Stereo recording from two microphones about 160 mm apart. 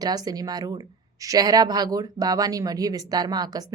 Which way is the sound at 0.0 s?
25° right (ahead or behind).